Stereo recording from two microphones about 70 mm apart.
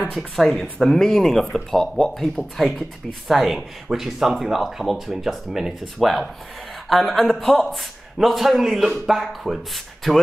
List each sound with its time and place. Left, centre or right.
0.0 s speech: centre